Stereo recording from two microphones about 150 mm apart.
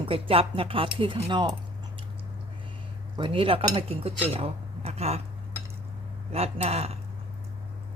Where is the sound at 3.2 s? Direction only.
35° right (ahead or behind).